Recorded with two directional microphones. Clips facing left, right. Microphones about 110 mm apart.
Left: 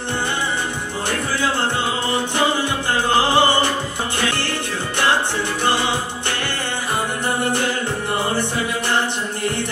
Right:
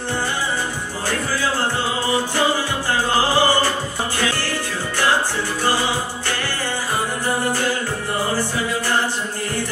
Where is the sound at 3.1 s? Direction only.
20° left (ahead or behind).